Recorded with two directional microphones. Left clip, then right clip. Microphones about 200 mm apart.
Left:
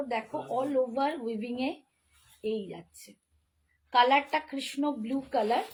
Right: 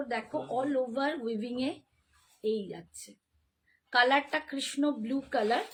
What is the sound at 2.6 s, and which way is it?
Speech, 15° right (ahead or behind).